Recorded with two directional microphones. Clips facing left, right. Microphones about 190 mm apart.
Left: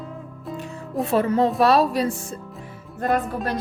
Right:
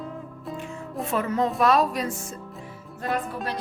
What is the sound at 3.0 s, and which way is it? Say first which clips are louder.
Music: left 6 dB; 50° left (ahead or behind).